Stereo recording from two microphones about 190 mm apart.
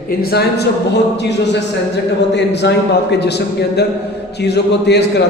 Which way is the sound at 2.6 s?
60° left (ahead or behind).